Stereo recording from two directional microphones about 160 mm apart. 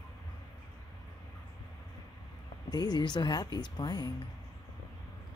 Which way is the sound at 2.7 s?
25° left (ahead or behind).